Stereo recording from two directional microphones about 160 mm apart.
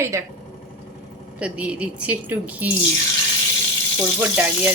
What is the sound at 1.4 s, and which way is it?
A woman's voice, 10° right (ahead or behind).